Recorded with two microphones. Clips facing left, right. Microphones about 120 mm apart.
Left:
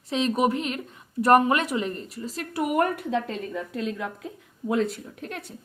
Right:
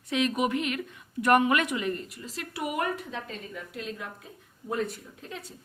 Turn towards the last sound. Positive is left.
turn(degrees=65)  # may be behind; listen again after turning